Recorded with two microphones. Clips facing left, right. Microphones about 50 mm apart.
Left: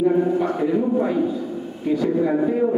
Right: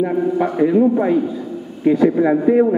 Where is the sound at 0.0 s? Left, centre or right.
Right.